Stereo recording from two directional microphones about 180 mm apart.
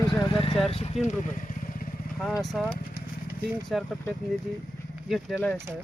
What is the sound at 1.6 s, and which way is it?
Vehicle, 50° left (ahead or behind).